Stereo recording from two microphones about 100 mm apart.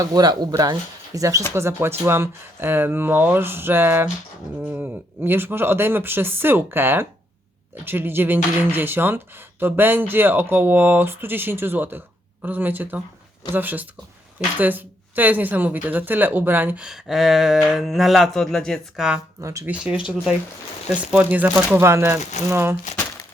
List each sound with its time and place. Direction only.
0.0 s a woman's voice: 40° right (ahead or behind); by 16.8 s 20° right (ahead or behind)
16.8 s speech: 5° right (ahead or behind)
19.4 s speech: 30° right (ahead or behind)
19.6 s a woman's voice: 10° right (ahead or behind)